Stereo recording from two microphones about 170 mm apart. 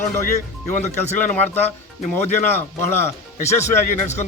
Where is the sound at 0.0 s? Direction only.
50° left (ahead or behind).